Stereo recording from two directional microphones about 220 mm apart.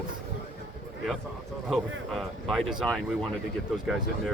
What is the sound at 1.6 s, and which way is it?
Speech, centre (ahead or behind).